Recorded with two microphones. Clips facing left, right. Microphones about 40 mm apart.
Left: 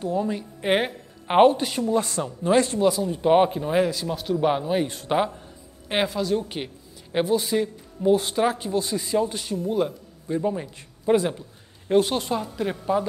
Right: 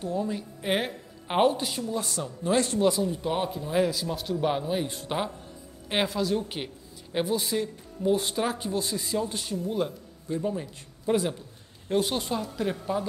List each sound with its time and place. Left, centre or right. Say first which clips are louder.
0.0 s a woman's voice: left 4 dB; left
2.0 s speech: left 7 dB; left
2.8 s speech: left 3 dB; centre
3.1 s speech: left 10 dB; left
3.7 s speech: left 3 dB; centre
5.9 s speech: left 3 dB; centre
7.6 s speech: left 5 dB; centre
8.5 s speech: left 4 dB; centre
9.1 s speech: left 7 dB; centre
9.4 s speech: left 4 dB; centre
10.2 s speech: left 4 dB; centre
11.9 s speech: left 6 dB; centre